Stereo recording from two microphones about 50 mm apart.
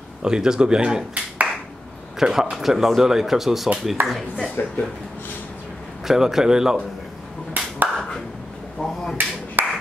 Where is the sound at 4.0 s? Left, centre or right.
Right.